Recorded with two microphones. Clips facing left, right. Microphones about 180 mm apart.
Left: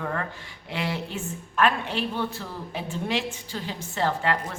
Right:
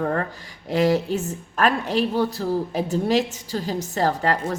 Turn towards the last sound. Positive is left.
turn(degrees=-40)  # may be behind; listen again after turning